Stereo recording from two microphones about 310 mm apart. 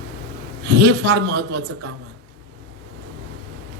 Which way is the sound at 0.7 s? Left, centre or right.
Right.